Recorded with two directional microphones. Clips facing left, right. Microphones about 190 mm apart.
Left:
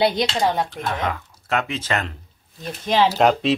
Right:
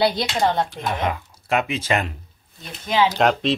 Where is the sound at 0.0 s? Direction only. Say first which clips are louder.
Left 1 dB; 20° left (ahead or behind).